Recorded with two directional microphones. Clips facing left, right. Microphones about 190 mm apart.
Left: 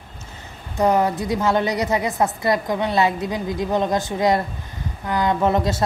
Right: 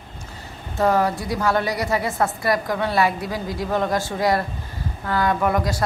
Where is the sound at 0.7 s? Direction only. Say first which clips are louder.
Left 1 dB; 20° left (ahead or behind).